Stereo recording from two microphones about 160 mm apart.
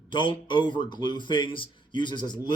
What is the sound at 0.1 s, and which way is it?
Speech, 30° left (ahead or behind).